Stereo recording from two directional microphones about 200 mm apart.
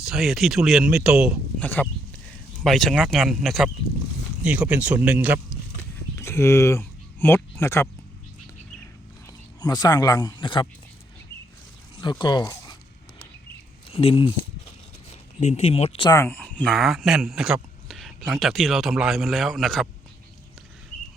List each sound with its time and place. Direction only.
0.0 s speech: centre (ahead or behind)
1.6 s speech: 10° left (ahead or behind); by 5.4 s 5° right (ahead or behind)
6.1 s speech: 15° left (ahead or behind)
9.6 s speech: 20° left (ahead or behind)
12.2 s speech: 20° left (ahead or behind)
13.9 s speech: 30° left (ahead or behind)
15.4 s speech: 35° left (ahead or behind)
16.1 s speech: 10° left (ahead or behind)